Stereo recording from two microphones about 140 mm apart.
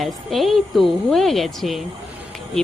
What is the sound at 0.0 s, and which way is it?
Speech, centre (ahead or behind).